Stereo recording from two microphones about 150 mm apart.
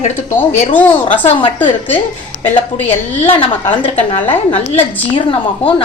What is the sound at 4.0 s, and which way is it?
A woman's voice, 40° left (ahead or behind).